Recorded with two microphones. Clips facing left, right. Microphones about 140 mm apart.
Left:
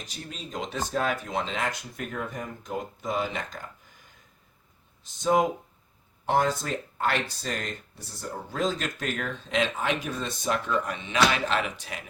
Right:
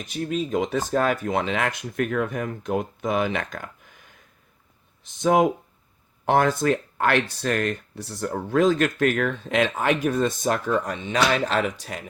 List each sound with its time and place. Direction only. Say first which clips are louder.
0.1 s speech: right 15 dB; 55° right (ahead or behind)
5.2 s speech: right 4 dB; 65° right (ahead or behind); by 12.0 s 40° right (ahead or behind)